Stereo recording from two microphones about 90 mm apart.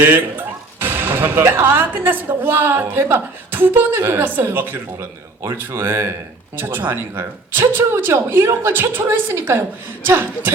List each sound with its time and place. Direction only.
0.0 s speech: 20° right (ahead or behind)